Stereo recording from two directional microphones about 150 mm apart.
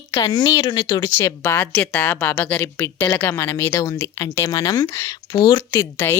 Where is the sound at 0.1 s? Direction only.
25° left (ahead or behind).